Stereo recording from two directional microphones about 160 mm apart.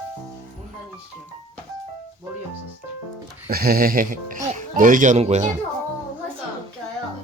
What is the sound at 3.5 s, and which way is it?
Speech, 70° right (ahead or behind).